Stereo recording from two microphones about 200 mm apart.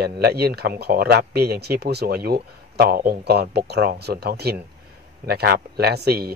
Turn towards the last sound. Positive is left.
turn(degrees=-50)  # may be behind; listen again after turning